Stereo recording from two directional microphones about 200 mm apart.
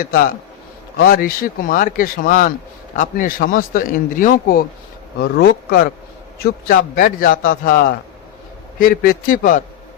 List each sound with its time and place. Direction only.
1.0 s a man's voice: 45° left (ahead or behind)